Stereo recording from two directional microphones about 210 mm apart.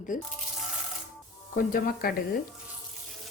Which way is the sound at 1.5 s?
45° left (ahead or behind).